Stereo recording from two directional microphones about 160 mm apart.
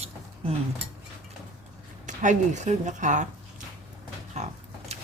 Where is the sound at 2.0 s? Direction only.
50° right (ahead or behind).